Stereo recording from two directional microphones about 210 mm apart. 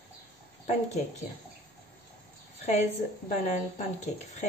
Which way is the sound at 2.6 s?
30° left (ahead or behind).